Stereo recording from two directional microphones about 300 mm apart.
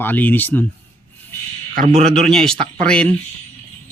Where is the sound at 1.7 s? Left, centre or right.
Right.